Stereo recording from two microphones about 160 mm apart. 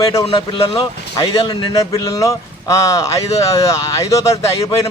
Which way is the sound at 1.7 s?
20° left (ahead or behind).